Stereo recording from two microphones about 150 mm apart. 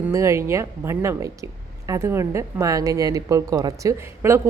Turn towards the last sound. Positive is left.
turn(degrees=-20)  # may be behind; listen again after turning